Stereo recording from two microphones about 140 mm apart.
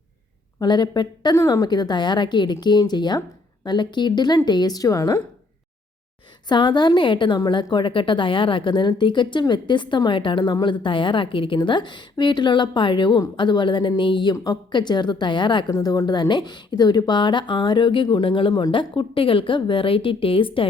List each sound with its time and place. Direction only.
0.6 s a woman's voice: 30° left (ahead or behind)
6.5 s a woman's voice: 35° left (ahead or behind)